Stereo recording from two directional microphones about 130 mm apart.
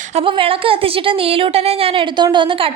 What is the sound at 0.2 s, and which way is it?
Speech, 45° right (ahead or behind).